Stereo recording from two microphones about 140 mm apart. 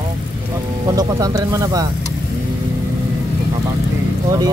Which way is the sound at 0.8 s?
25° right (ahead or behind).